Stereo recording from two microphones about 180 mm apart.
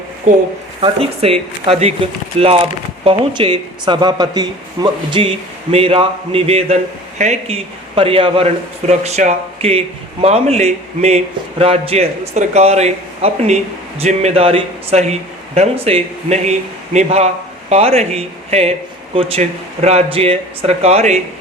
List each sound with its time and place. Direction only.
0.8 s speech: 35° right (ahead or behind)